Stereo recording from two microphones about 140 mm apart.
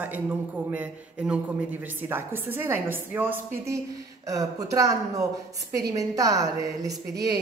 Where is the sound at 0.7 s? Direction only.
10° right (ahead or behind).